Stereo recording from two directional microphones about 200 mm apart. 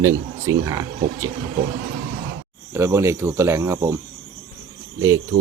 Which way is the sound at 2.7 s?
15° right (ahead or behind).